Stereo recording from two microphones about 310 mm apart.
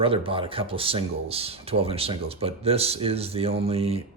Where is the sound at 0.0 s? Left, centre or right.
Centre.